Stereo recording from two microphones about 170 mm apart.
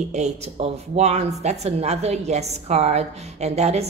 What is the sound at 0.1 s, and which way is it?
Speech, 40° right (ahead or behind).